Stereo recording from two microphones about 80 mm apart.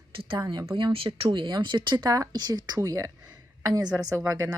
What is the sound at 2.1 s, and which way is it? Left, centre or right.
Speech, right.